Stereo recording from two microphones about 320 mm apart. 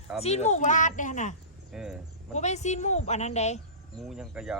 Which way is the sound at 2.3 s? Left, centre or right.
Left.